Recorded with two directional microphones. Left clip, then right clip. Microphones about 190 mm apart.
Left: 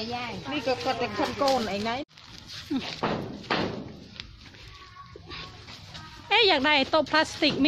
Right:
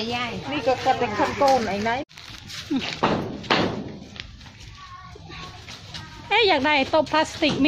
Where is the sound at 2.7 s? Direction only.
5° left (ahead or behind).